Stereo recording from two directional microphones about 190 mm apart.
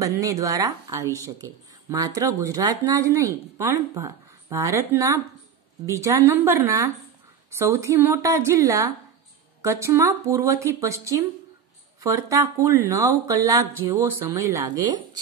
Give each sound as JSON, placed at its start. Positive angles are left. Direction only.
{"t": 0.0, "sound": "speech", "side_deg": -20}